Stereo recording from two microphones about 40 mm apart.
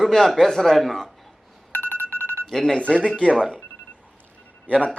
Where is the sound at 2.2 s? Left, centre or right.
Right.